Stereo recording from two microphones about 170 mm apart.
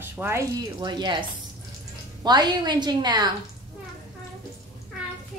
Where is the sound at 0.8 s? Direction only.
25° right (ahead or behind).